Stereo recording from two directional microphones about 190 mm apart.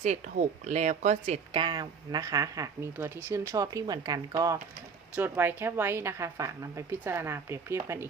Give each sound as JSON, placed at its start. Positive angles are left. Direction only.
{"t": 0.0, "sound": "speech", "side_deg": -40}
{"t": 1.5, "sound": "a woman's voice", "side_deg": -25}